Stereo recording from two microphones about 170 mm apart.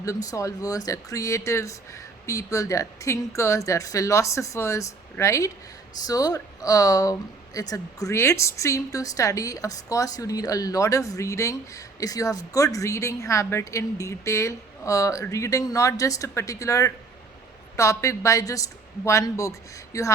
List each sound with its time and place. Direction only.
0.0 s speech: 20° left (ahead or behind)